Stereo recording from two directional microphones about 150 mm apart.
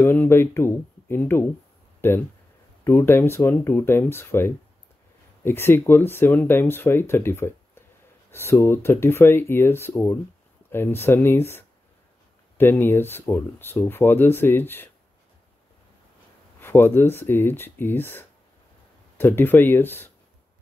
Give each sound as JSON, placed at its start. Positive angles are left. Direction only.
{"t": 0.0, "sound": "speech", "side_deg": 15}
{"t": 2.0, "sound": "a sound", "side_deg": 15}
{"t": 2.8, "sound": "speech", "side_deg": 15}
{"t": 16.6, "sound": "speech", "side_deg": 15}